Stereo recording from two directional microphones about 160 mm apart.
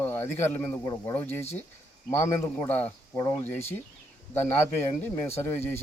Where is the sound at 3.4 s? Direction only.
15° left (ahead or behind).